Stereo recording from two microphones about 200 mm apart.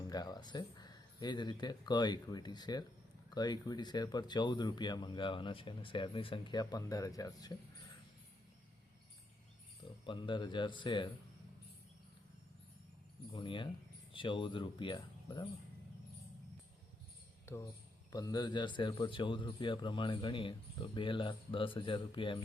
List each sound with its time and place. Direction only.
0.1 s a man's voice: 20° left (ahead or behind)
10.1 s a man's voice: 25° left (ahead or behind)
13.3 s a man's voice: 25° left (ahead or behind)
17.4 s a sound: 15° left (ahead or behind)
18.1 s a man's voice: 20° left (ahead or behind)